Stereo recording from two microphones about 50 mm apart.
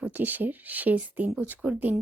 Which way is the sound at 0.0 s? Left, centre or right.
Right.